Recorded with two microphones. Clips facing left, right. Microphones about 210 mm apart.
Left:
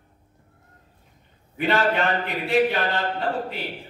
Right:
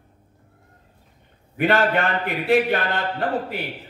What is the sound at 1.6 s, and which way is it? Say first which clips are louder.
Speech: right 2 dB; 55° right (ahead or behind).